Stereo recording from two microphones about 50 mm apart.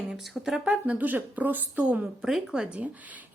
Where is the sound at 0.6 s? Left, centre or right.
Right.